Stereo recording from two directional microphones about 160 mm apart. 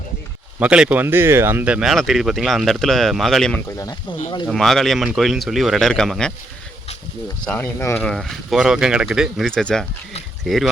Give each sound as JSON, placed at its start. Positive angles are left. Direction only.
{"t": 0.6, "sound": "speech", "side_deg": -5}
{"t": 3.7, "sound": "speech", "side_deg": 20}
{"t": 4.4, "sound": "speech", "side_deg": 0}
{"t": 7.4, "sound": "speech", "side_deg": 15}
{"t": 8.0, "sound": "speech", "side_deg": 0}